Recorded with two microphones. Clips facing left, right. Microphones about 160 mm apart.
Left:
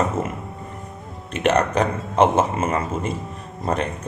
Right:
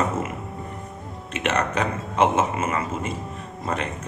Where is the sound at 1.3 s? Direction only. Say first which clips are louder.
Left 5 dB; 35° left (ahead or behind).